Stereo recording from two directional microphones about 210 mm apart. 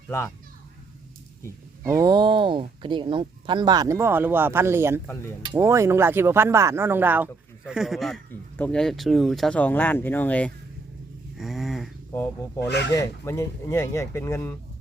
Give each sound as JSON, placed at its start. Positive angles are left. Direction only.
{"t": 1.8, "sound": "speech", "side_deg": -15}
{"t": 11.3, "sound": "a sound", "side_deg": 0}
{"t": 12.5, "sound": "speech", "side_deg": 50}
{"t": 12.9, "sound": "speech", "side_deg": 15}